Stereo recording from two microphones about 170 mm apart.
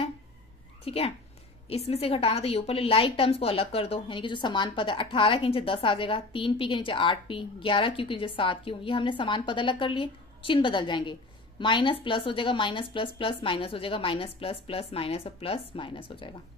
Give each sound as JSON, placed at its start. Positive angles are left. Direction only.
{"t": 0.8, "sound": "a woman's voice", "side_deg": 35}